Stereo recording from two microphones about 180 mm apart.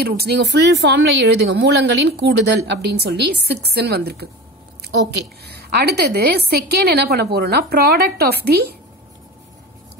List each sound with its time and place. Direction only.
0.0 s speech: 60° right (ahead or behind)
4.8 s speech: 75° right (ahead or behind)
5.4 s a woman's voice: 65° right (ahead or behind)